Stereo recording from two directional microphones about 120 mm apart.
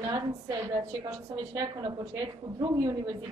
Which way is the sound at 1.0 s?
35° right (ahead or behind).